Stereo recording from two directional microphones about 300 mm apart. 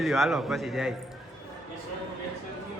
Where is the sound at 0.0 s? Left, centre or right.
Centre.